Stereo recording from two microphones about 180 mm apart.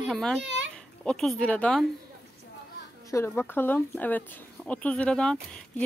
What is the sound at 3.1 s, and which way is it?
Speech, 15° left (ahead or behind).